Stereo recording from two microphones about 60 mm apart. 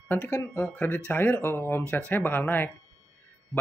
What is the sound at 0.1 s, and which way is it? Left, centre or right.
Speech, left.